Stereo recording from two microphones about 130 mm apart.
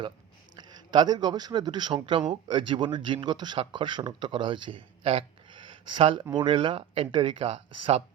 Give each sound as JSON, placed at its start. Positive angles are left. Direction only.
{"t": 0.5, "sound": "speech", "side_deg": -35}